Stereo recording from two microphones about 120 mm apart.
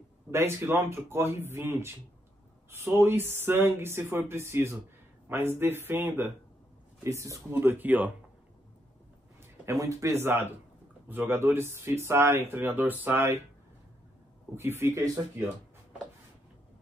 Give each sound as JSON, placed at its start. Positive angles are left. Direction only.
{"t": 0.3, "sound": "speech", "side_deg": -20}
{"t": 9.7, "sound": "speech", "side_deg": -25}
{"t": 14.5, "sound": "speech", "side_deg": -20}